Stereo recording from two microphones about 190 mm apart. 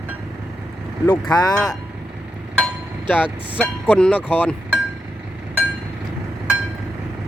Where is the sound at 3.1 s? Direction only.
10° left (ahead or behind).